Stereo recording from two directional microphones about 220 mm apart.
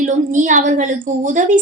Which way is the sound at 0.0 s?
35° right (ahead or behind).